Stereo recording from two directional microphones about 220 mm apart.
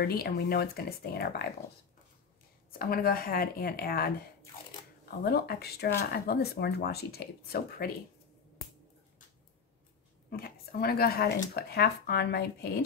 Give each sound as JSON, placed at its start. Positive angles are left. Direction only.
{"t": 0.0, "sound": "speech", "side_deg": 45}
{"t": 2.8, "sound": "speech", "side_deg": 40}
{"t": 5.2, "sound": "speech", "side_deg": 45}
{"t": 10.3, "sound": "speech", "side_deg": 45}